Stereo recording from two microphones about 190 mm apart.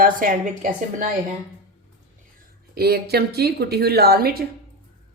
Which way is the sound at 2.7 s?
55° right (ahead or behind).